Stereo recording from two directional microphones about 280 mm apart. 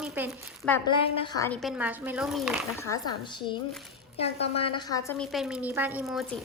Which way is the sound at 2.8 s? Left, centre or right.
Centre.